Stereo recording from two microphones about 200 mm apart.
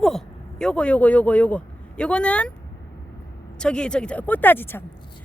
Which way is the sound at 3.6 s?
5° left (ahead or behind).